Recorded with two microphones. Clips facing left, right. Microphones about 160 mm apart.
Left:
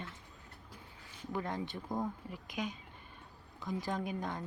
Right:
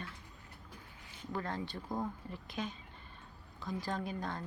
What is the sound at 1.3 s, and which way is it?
Speech, 15° left (ahead or behind).